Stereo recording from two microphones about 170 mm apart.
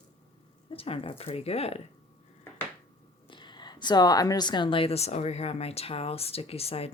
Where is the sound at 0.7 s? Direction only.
35° left (ahead or behind).